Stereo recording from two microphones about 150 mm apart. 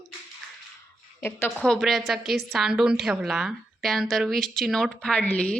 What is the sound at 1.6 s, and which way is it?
A woman's voice, centre (ahead or behind).